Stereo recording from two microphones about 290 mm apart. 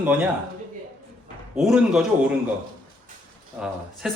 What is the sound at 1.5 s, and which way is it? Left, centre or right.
Speech, centre.